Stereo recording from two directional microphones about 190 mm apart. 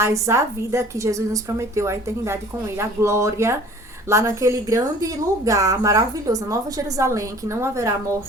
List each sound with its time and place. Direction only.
0.0 s a woman's voice: 15° right (ahead or behind)